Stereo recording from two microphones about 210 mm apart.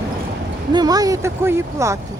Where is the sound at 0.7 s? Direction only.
20° right (ahead or behind).